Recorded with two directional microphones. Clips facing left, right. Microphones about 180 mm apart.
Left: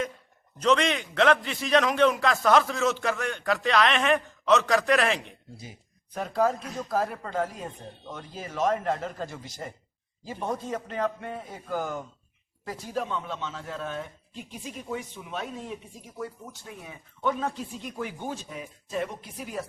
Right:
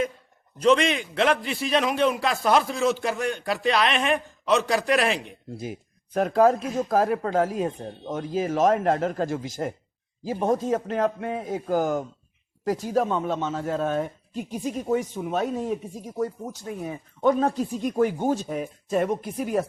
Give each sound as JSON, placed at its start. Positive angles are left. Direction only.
{"t": 0.6, "sound": "a man's voice", "side_deg": -10}
{"t": 6.1, "sound": "speech", "side_deg": -55}
{"t": 9.4, "sound": "a man's voice", "side_deg": -90}
{"t": 10.4, "sound": "speech", "side_deg": -45}